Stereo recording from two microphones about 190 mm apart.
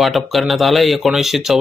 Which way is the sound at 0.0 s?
Centre (ahead or behind).